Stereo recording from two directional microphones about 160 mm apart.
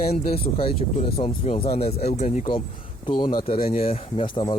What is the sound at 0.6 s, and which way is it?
Speech, 35° left (ahead or behind).